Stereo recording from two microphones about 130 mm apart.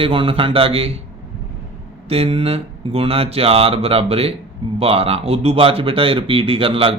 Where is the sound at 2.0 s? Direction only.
50° right (ahead or behind).